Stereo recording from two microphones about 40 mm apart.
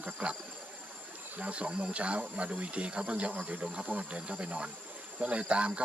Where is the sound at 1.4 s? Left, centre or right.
Right.